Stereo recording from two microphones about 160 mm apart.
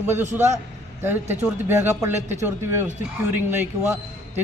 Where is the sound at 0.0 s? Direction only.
15° right (ahead or behind).